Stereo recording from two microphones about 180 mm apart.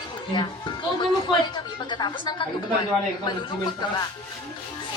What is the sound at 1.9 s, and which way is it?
Speech, 25° left (ahead or behind).